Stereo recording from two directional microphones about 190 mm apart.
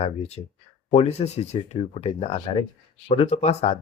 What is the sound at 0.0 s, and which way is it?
Speech, 35° left (ahead or behind).